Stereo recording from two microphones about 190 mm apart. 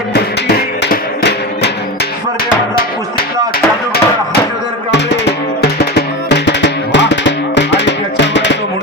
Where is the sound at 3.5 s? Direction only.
50° left (ahead or behind).